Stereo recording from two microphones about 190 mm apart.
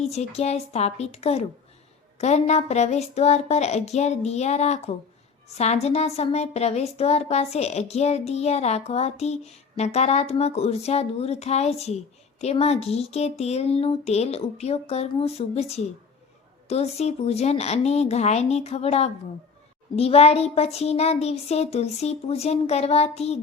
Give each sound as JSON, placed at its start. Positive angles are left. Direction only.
{"t": 0.0, "sound": "speech", "side_deg": 35}